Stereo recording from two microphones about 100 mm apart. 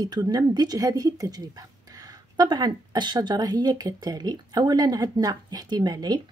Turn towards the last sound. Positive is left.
turn(degrees=-45)  # may be behind; listen again after turning